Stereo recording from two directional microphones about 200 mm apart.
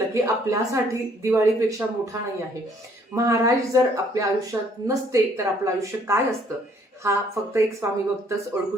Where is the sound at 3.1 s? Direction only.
15° right (ahead or behind).